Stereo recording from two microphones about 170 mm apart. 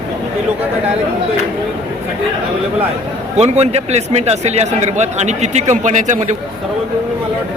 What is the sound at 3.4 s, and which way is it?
Speech, 40° right (ahead or behind).